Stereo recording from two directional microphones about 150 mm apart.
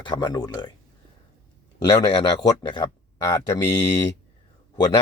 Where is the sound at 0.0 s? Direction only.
30° left (ahead or behind).